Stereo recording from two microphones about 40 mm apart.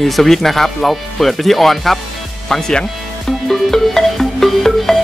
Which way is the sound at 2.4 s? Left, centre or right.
Centre.